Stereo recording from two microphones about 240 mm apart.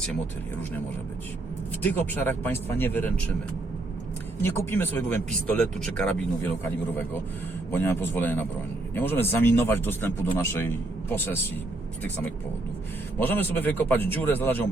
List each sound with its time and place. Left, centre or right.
1.8 s speech: centre
4.4 s speech: centre
13.1 s speech: centre